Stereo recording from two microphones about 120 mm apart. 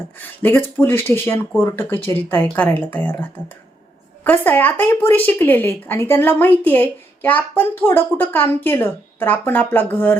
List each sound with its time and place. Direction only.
0.2 s speech: 15° left (ahead or behind)